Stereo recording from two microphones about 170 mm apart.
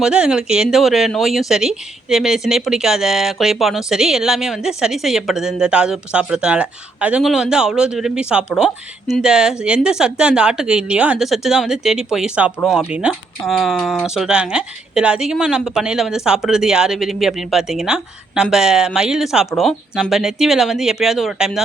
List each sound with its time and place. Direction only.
0.0 s speech: 5° right (ahead or behind)